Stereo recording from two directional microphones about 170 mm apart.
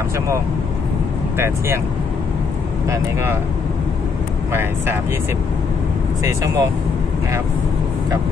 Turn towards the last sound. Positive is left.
turn(degrees=-20)  # may be behind; listen again after turning